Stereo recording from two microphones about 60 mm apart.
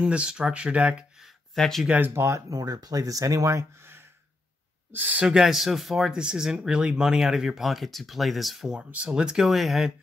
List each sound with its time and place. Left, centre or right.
0.0 s speech: centre
1.2 s a sound: centre
2.1 s speech: right
2.5 s speech: right
3.8 s a sound: right
4.9 s speech: right
5.2 s speech: centre
8.9 s speech: centre